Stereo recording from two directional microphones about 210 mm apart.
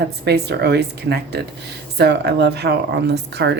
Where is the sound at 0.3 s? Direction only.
50° right (ahead or behind).